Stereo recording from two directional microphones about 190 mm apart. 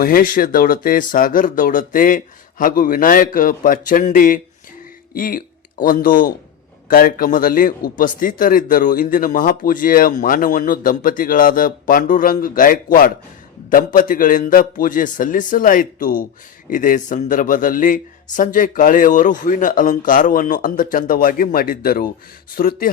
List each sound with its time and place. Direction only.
0.0 s a man's voice: 50° left (ahead or behind)